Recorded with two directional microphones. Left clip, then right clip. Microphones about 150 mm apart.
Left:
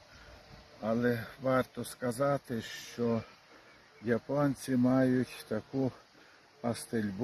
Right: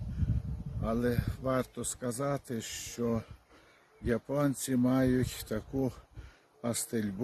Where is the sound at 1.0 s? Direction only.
90° right.